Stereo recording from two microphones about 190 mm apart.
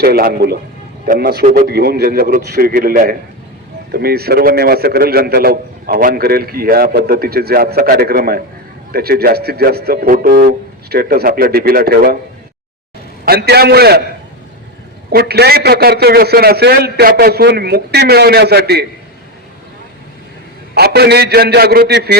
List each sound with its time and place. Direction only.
0.0 s a man's voice: 55° right (ahead or behind)
13.2 s a man's voice: 55° right (ahead or behind)
15.1 s a man's voice: 55° right (ahead or behind)
20.7 s a man's voice: 60° right (ahead or behind)